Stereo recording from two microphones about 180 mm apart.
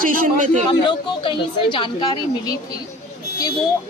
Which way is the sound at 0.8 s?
25° left (ahead or behind).